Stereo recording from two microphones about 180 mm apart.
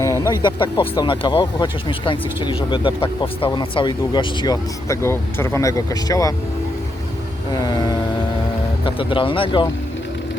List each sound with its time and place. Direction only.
0.0 s speech: 15° left (ahead or behind)
7.6 s vehicle: 20° left (ahead or behind)
8.8 s speech: 30° left (ahead or behind)